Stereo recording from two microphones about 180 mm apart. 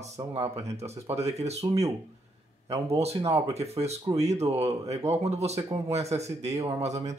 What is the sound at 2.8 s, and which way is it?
Speech, 35° right (ahead or behind).